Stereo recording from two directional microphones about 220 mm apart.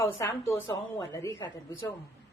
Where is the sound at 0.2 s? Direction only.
10° left (ahead or behind).